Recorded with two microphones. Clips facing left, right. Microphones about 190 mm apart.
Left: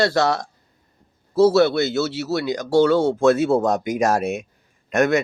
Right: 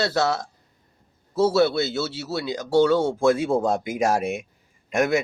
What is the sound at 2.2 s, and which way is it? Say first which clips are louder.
Speech: left 5 dB; 10° right (ahead or behind).